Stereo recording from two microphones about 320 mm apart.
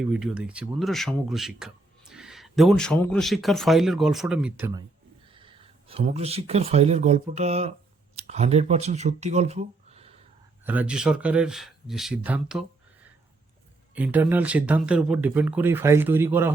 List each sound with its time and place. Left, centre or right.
0.0 s speech: centre
5.3 s speech: centre
10.7 s speech: centre
13.9 s speech: centre